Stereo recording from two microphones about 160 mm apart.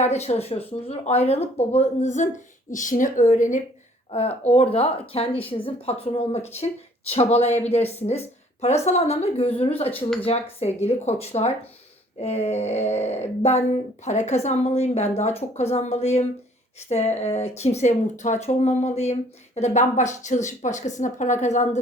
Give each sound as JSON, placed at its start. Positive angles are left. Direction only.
{"t": 0.0, "sound": "a woman's voice", "side_deg": 40}
{"t": 4.1, "sound": "a woman's voice", "side_deg": 40}